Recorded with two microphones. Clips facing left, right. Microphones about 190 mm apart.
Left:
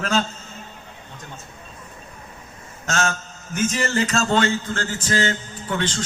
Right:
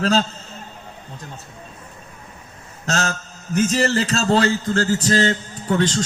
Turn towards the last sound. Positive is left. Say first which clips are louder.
# right 6 dB
turn(degrees=-40)  # may be behind; listen again after turning